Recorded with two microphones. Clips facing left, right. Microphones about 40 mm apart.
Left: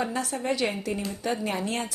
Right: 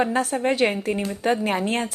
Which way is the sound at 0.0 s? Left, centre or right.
Right.